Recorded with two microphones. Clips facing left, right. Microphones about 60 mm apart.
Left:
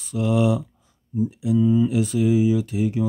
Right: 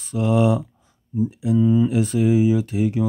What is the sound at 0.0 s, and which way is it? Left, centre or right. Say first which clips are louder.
Speech: right 2 dB; right.